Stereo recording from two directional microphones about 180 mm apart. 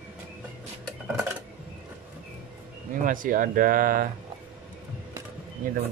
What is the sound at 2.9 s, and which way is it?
Speech, 50° right (ahead or behind).